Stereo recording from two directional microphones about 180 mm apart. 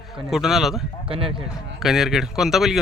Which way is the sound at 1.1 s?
30° right (ahead or behind).